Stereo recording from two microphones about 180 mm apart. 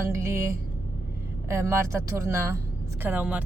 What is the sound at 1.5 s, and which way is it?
A woman's voice, 15° right (ahead or behind).